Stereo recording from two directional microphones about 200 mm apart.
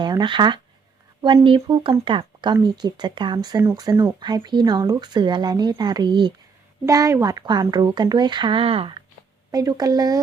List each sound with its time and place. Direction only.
0.0 s speech: 20° right (ahead or behind)